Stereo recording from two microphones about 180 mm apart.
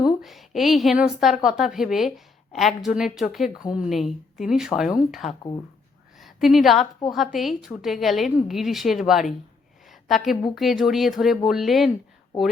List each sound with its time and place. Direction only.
0.0 s a woman's voice: centre (ahead or behind)
5.3 s speech: 25° left (ahead or behind)
6.1 s a woman's voice: centre (ahead or behind)
9.9 s a sound: centre (ahead or behind)
10.5 s a woman's voice: centre (ahead or behind)